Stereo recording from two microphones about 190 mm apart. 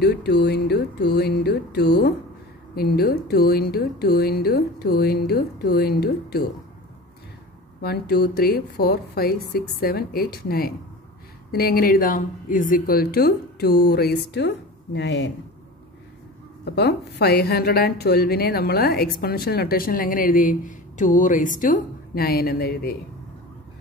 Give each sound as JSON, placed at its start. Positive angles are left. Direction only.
{"t": 0.0, "sound": "a woman's voice", "side_deg": 60}
{"t": 7.8, "sound": "speech", "side_deg": 55}
{"t": 16.6, "sound": "a woman's voice", "side_deg": 60}